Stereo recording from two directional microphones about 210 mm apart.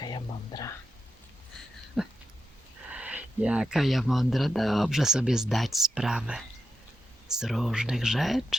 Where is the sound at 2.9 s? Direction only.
5° right (ahead or behind).